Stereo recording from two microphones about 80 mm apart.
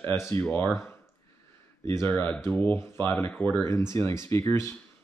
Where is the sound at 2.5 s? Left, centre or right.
Left.